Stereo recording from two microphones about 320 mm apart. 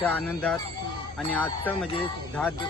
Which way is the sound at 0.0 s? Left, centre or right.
Centre.